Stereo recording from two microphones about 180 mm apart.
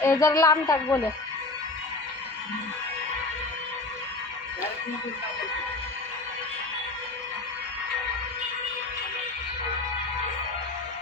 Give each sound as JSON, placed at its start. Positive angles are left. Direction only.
{"t": 0.0, "sound": "speech", "side_deg": 15}